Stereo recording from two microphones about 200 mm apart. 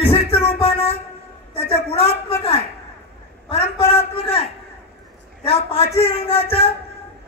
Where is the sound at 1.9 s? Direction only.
30° left (ahead or behind).